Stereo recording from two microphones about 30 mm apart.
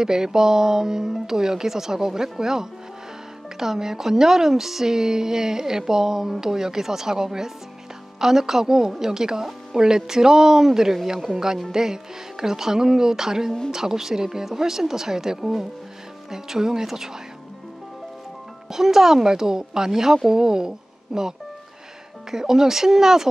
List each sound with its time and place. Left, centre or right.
0.0 s a woman's voice: centre
18.7 s a woman's voice: centre